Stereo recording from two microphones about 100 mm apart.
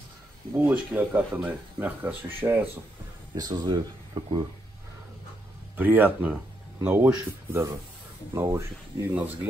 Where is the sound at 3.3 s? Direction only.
40° right (ahead or behind).